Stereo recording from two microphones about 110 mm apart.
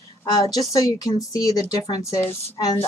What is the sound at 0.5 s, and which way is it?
Speech, 35° left (ahead or behind).